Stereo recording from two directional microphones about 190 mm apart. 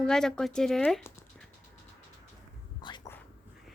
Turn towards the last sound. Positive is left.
turn(degrees=15)  # may be behind; listen again after turning